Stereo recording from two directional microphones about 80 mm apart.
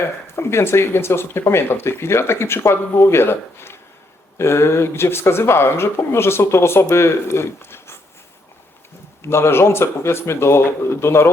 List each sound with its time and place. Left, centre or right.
0.0 s speech: left
9.2 s speech: left